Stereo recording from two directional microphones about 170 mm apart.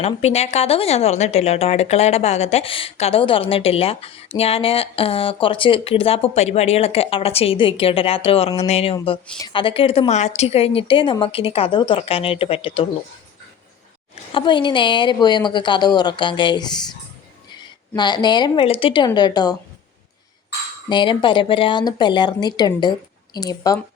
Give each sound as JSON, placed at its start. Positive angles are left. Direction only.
{"t": 0.0, "sound": "speech", "side_deg": 40}
{"t": 14.3, "sound": "a woman's voice", "side_deg": 30}
{"t": 17.9, "sound": "a woman's voice", "side_deg": 25}
{"t": 20.9, "sound": "a woman's voice", "side_deg": 30}